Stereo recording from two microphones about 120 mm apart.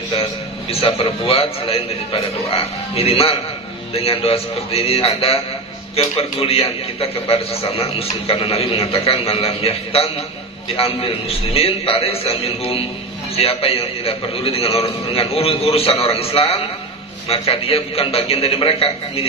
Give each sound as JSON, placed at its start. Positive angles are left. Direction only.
{"t": 0.7, "sound": "a man's voice", "side_deg": 55}